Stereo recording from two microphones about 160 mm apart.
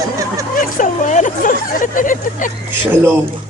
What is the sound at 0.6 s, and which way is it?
Speech, 55° left (ahead or behind).